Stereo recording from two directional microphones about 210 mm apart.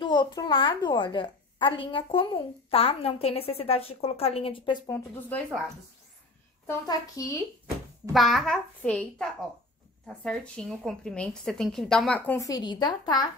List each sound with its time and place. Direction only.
0.0 s a child's voice: 20° left (ahead or behind)
6.7 s a child's voice: 15° left (ahead or behind)
8.1 s a woman's voice: centre (ahead or behind); by 13.3 s 20° left (ahead or behind)